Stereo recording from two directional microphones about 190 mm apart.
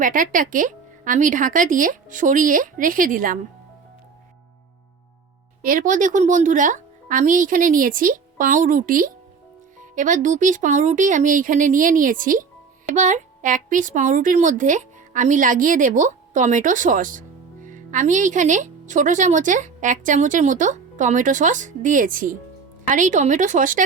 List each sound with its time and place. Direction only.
0.0 s speech: 45° right (ahead or behind)
5.6 s speech: 45° right (ahead or behind)